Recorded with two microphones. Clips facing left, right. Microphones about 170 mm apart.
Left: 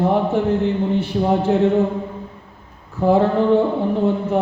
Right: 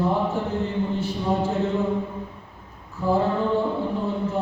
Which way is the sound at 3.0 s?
70° left (ahead or behind).